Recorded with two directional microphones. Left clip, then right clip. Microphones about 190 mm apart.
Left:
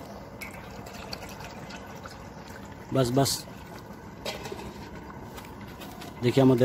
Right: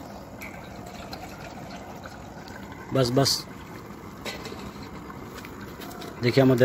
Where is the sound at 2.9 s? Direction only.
Centre (ahead or behind).